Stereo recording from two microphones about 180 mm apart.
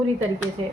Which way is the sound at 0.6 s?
30° right (ahead or behind).